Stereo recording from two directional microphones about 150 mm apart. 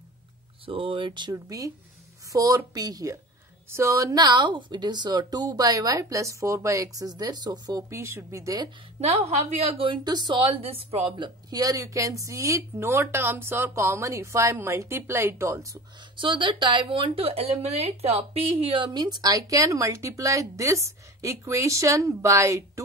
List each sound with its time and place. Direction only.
0.7 s a woman's voice: 35° right (ahead or behind); by 8.6 s 20° right (ahead or behind)
9.0 s a woman's voice: 45° right (ahead or behind); by 15.8 s 20° right (ahead or behind)
16.2 s a woman's voice: 30° right (ahead or behind)